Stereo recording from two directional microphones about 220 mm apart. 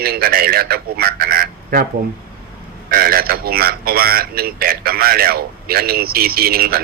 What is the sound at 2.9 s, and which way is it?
Speech, 40° right (ahead or behind).